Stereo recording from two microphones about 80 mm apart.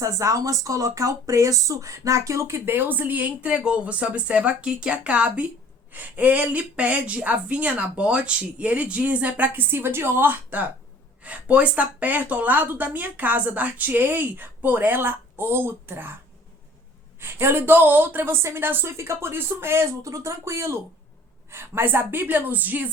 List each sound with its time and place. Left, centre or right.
0.0 s a woman's voice: right
17.2 s a woman's voice: right